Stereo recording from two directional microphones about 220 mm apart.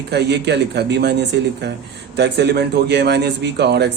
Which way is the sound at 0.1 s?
50° right (ahead or behind).